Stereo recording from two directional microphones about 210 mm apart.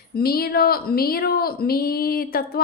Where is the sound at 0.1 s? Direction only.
45° left (ahead or behind).